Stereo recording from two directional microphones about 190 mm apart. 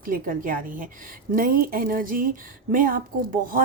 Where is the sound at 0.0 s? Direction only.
45° right (ahead or behind).